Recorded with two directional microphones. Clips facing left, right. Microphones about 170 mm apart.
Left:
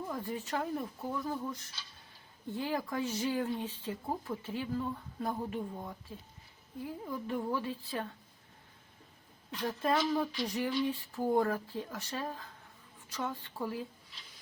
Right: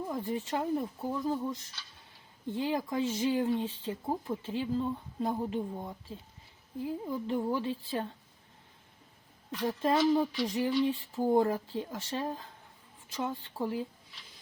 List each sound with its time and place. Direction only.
0.1 s speech: 20° right (ahead or behind)
7.0 s speech: 20° right (ahead or behind)
9.6 s speech: 25° right (ahead or behind)